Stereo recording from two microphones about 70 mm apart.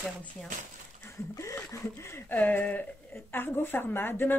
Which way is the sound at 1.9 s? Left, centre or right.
Left.